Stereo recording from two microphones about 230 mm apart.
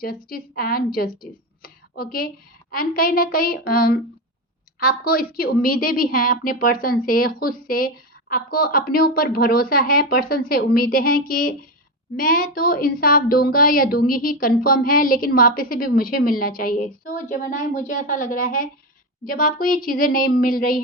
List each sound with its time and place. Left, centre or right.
0.0 s a woman's voice: left